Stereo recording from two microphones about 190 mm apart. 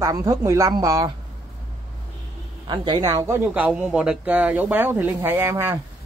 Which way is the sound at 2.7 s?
25° right (ahead or behind).